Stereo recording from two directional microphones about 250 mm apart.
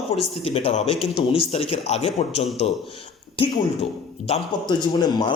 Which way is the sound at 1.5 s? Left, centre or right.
Left.